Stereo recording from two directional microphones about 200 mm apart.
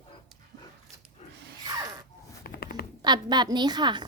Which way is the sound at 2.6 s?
50° left (ahead or behind).